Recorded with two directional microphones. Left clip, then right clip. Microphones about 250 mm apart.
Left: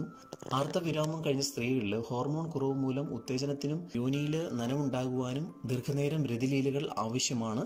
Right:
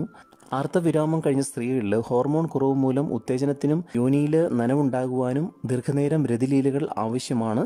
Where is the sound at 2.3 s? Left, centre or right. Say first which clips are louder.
Right 11 dB; right.